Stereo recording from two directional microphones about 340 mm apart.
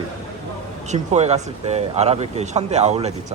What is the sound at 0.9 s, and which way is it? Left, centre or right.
Speech, centre.